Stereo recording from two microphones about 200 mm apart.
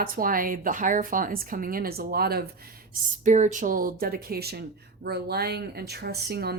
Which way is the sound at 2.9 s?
35° right (ahead or behind).